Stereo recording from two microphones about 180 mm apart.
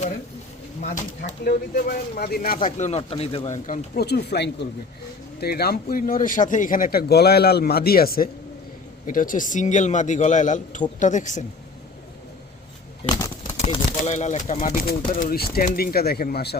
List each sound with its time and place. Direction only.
0.8 s speech: 50° left (ahead or behind)
2.6 s speech: 40° left (ahead or behind)
3.9 s speech: 65° left (ahead or behind); by 11.4 s 45° left (ahead or behind)
13.1 s a sound: 20° left (ahead or behind)
13.6 s speech: 40° left (ahead or behind)
15.2 s speech: 55° left (ahead or behind)